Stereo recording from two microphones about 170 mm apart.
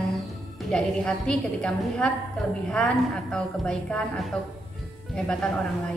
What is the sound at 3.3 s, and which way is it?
A woman's voice, 5° left (ahead or behind).